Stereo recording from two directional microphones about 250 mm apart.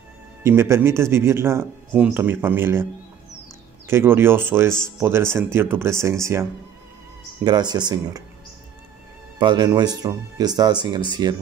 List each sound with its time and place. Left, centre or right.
0.4 s speech: centre
7.4 s speech: centre
9.4 s speech: centre